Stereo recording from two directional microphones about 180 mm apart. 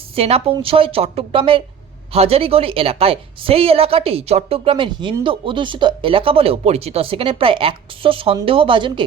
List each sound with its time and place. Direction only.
0.2 s a woman's voice: 35° right (ahead or behind)